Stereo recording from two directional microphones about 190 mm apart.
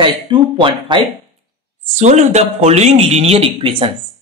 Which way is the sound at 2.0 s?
35° right (ahead or behind).